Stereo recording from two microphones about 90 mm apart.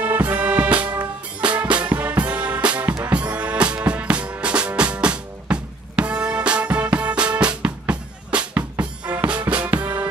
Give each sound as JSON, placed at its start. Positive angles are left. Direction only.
{"t": 0.0, "sound": "music", "side_deg": -20}